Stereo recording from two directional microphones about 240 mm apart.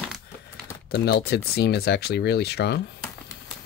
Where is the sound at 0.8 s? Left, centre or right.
Left.